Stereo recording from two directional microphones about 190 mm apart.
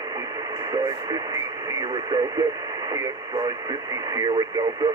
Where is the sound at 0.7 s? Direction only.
20° right (ahead or behind).